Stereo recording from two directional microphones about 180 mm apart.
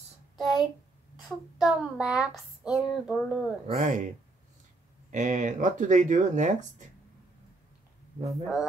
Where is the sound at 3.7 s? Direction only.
40° right (ahead or behind).